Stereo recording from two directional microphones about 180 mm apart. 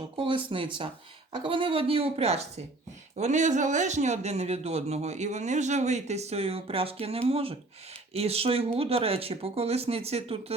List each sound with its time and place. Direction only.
0.2 s speech: 30° right (ahead or behind)